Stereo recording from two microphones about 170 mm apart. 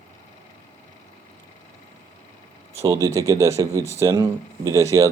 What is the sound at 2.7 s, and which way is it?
Speech, 20° right (ahead or behind).